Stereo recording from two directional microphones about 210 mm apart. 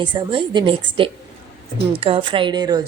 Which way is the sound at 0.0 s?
20° right (ahead or behind).